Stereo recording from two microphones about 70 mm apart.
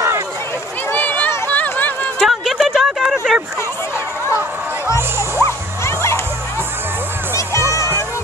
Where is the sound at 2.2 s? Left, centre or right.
Centre.